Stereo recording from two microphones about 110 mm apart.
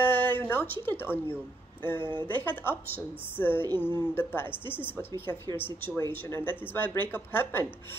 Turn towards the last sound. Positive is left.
turn(degrees=20)  # may be behind; listen again after turning